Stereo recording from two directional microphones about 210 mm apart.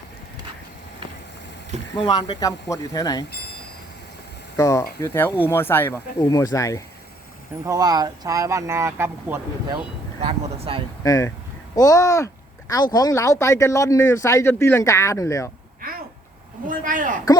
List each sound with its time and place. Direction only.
2.0 s speech: 20° left (ahead or behind)
4.5 s speech: 15° left (ahead or behind)
7.6 s speech: 15° right (ahead or behind)
10.2 s speech: 25° right (ahead or behind)
11.0 s speech: 15° left (ahead or behind)
15.8 s a sound: 45° right (ahead or behind)
16.6 s speech: 40° right (ahead or behind)